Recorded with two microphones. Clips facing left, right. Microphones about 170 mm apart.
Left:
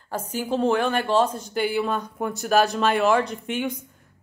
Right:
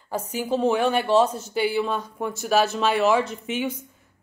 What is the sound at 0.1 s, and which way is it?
A woman's voice, 10° right (ahead or behind).